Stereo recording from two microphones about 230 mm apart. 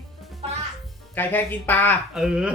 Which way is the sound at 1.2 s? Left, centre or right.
Centre.